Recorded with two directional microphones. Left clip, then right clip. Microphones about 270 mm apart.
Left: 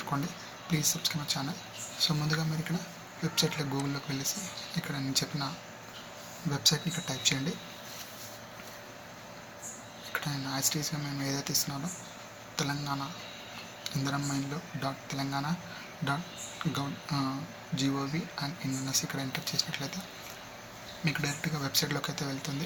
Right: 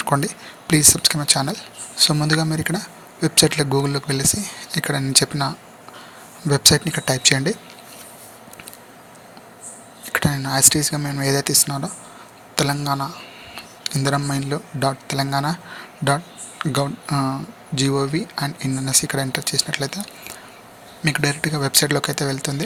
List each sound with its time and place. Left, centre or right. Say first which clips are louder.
0.1 s speech: right 14 dB; right
6.5 s speech: right 13 dB; right
10.1 s speech: right 13 dB; right
16.7 s speech: right 14 dB; right
21.0 s speech: right 13 dB; right